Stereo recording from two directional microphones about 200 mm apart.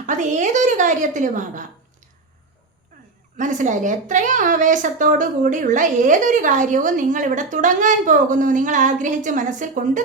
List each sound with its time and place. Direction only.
0.0 s a woman's voice: 40° right (ahead or behind)
3.3 s a woman's voice: 40° right (ahead or behind)